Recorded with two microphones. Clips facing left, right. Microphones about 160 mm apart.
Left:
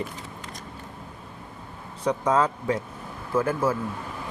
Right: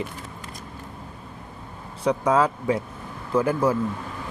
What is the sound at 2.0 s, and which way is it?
Speech, 10° right (ahead or behind).